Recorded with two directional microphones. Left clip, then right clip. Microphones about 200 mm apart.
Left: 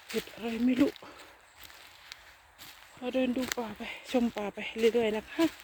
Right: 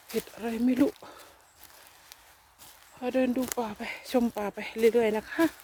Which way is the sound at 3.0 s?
20° right (ahead or behind).